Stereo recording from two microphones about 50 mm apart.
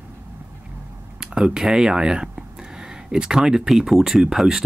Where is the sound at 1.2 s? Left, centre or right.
Centre.